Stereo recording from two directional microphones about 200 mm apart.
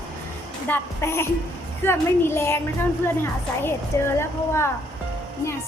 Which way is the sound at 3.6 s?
10° left (ahead or behind).